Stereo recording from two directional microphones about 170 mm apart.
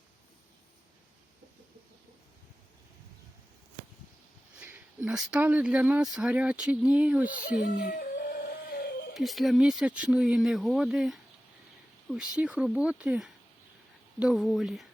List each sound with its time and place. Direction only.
4.6 s speech: 10° right (ahead or behind)
7.3 s speech: 50° left (ahead or behind)
7.9 s music: 60° left (ahead or behind)
9.1 s speech: centre (ahead or behind)